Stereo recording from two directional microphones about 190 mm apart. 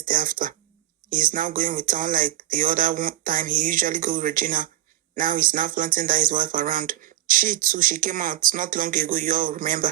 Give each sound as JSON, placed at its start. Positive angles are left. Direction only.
{"t": 0.0, "sound": "speech", "side_deg": -45}